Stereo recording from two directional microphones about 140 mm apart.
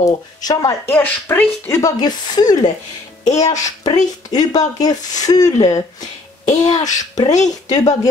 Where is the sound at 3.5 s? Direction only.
25° left (ahead or behind).